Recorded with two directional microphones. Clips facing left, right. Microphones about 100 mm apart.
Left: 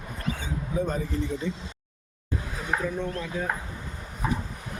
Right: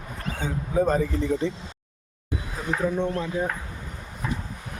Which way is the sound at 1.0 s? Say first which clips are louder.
Right 6 dB; 90° right.